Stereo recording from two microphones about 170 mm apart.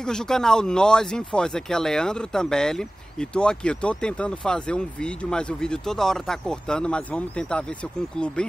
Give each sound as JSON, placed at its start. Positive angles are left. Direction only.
{"t": 0.0, "sound": "speech", "side_deg": 5}